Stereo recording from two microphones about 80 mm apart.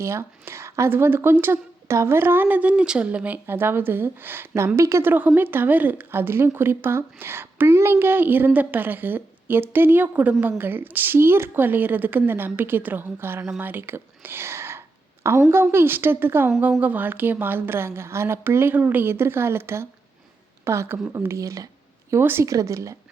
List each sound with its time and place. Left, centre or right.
0.0 s a woman's voice: right
5.1 s a woman's voice: right
22.1 s a woman's voice: right
22.4 s speech: right